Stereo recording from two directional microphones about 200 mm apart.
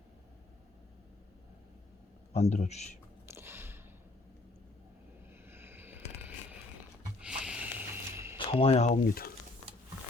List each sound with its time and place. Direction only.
2.4 s speech: 35° left (ahead or behind)
3.2 s biting: 10° right (ahead or behind)
5.5 s a sound: 10° right (ahead or behind)
8.4 s speech: 25° left (ahead or behind); by 9.3 s 45° left (ahead or behind)